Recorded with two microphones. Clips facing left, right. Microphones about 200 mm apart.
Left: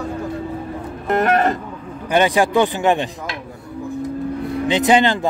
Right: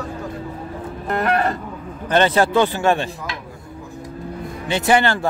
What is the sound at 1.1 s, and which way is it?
Guitar, 20° left (ahead or behind).